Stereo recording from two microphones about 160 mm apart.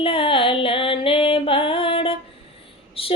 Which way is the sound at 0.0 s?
35° left (ahead or behind).